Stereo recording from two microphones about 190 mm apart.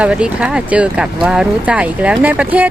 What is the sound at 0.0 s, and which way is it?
Speech, 5° right (ahead or behind).